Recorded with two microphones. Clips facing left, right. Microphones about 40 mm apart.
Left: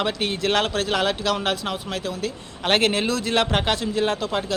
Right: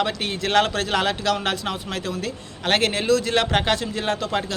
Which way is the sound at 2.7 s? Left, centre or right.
Centre.